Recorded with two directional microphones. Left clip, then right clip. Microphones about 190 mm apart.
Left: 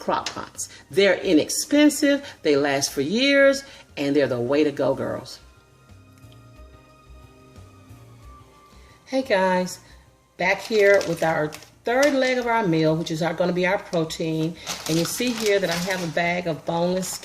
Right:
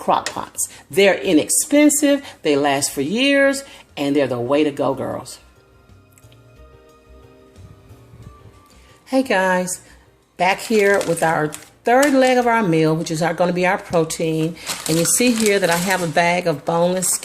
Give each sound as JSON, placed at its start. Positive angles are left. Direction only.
{"t": 0.0, "sound": "speech", "side_deg": -15}
{"t": 9.0, "sound": "speech", "side_deg": -30}